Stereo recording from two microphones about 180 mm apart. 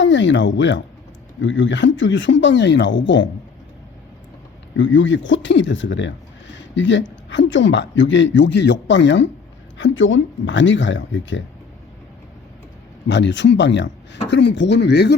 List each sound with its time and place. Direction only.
0.0 s speech: 90° left
4.8 s speech: 90° left
13.1 s speech: 80° left